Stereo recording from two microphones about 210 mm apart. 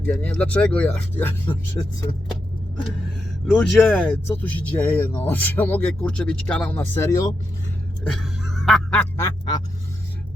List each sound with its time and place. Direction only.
0.0 s speech: 5° left (ahead or behind)
1.8 s speech: 20° left (ahead or behind)
3.4 s speech: centre (ahead or behind)
8.0 s a sound: centre (ahead or behind)